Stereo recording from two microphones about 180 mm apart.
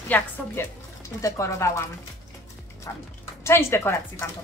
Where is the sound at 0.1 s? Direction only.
10° left (ahead or behind).